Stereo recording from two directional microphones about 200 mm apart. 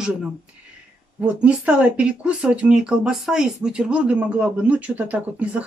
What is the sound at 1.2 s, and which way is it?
Speech, 5° right (ahead or behind).